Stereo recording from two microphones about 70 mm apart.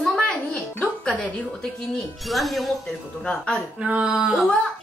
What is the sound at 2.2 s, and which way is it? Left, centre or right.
Speech, centre.